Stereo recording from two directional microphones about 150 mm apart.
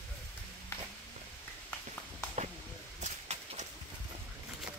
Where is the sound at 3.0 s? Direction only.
50° right (ahead or behind).